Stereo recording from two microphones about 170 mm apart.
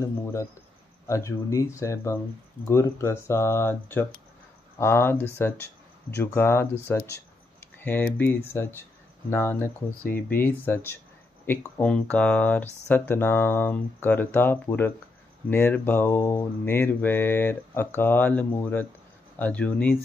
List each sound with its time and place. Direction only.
0.0 s mantra: 15° left (ahead or behind)